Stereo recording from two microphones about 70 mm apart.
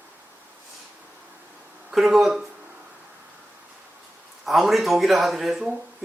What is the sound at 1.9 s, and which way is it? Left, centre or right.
Speech, centre.